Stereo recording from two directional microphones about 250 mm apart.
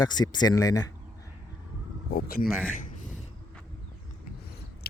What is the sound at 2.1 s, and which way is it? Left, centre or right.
Speech, left.